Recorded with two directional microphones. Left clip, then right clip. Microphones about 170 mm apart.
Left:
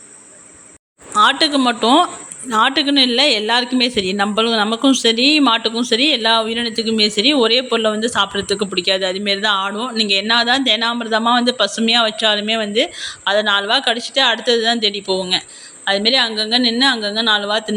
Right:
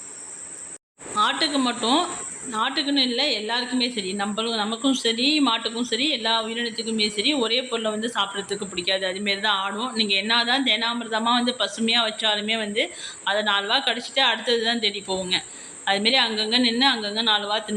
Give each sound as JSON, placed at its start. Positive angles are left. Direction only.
{"t": 1.1, "sound": "a woman's voice", "side_deg": 45}